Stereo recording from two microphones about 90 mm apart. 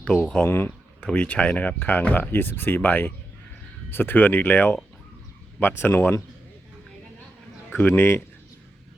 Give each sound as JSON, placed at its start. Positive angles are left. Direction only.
{"t": 0.0, "sound": "speech", "side_deg": 15}
{"t": 0.4, "sound": "speech", "side_deg": 25}
{"t": 1.0, "sound": "speech", "side_deg": 15}
{"t": 7.7, "sound": "speech", "side_deg": 25}